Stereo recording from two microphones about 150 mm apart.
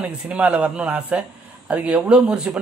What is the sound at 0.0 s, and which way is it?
Speech, 10° right (ahead or behind).